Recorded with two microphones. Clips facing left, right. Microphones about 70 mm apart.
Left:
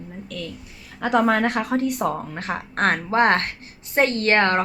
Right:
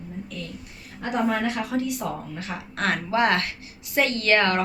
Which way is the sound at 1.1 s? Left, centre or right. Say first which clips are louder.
Left 5 dB; left.